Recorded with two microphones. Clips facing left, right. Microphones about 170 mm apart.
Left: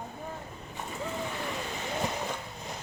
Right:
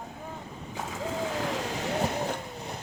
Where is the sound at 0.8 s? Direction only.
90° right; by 2.4 s 65° right (ahead or behind).